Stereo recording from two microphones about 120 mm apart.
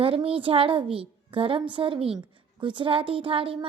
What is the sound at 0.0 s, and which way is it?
A woman's voice, 50° right (ahead or behind).